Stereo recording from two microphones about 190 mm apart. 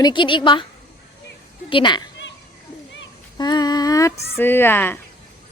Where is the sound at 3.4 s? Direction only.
20° left (ahead or behind).